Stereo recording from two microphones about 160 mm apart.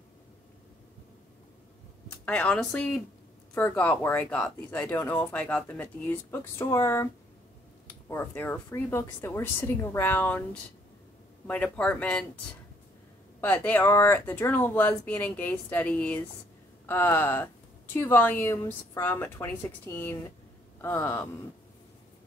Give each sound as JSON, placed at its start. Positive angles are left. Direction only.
{"t": 2.2, "sound": "speech", "side_deg": 10}
{"t": 8.1, "sound": "speech", "side_deg": 10}
{"t": 13.4, "sound": "speech", "side_deg": 10}